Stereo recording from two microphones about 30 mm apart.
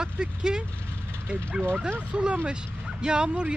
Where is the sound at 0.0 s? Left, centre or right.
Right.